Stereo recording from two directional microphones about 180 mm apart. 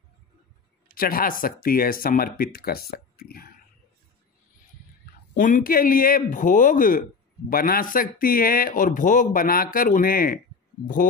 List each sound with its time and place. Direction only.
0.9 s speech: 55° left (ahead or behind)
5.3 s speech: 45° left (ahead or behind)